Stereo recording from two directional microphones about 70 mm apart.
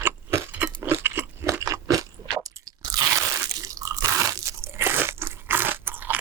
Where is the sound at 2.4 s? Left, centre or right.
Right.